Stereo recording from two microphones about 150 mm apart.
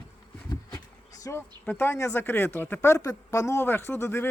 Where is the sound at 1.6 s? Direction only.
15° left (ahead or behind).